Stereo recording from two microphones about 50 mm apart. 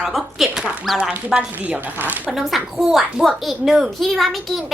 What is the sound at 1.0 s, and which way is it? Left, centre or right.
Speech, centre.